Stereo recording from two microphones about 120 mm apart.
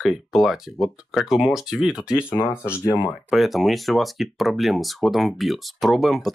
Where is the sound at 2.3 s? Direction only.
20° left (ahead or behind).